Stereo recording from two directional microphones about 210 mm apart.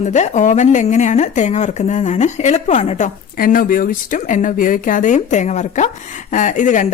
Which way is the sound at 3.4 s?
45° left (ahead or behind).